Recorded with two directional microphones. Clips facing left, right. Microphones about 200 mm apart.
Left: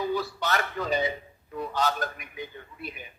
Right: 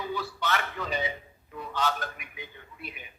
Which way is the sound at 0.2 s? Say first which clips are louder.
Left 2 dB; 40° left (ahead or behind).